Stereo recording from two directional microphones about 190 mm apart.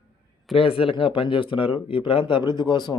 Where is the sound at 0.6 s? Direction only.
30° left (ahead or behind).